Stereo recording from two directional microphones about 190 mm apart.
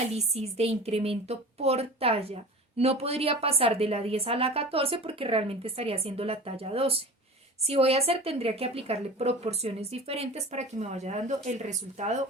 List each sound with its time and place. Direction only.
0.1 s speech: 35° right (ahead or behind)